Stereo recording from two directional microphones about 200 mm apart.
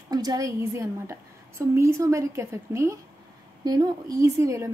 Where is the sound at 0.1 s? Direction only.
20° right (ahead or behind).